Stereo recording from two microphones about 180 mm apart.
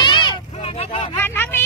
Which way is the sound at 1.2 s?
10° left (ahead or behind).